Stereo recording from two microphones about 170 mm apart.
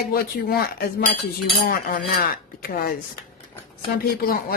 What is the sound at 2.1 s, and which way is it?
Speech, 60° left (ahead or behind).